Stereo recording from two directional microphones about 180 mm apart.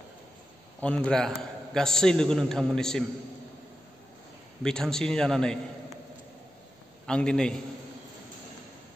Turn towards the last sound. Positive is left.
turn(degrees=5)  # may be behind; listen again after turning